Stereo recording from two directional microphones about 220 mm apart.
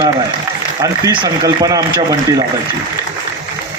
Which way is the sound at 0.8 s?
15° right (ahead or behind).